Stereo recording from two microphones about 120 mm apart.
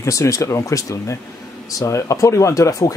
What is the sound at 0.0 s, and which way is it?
Speech, 25° left (ahead or behind).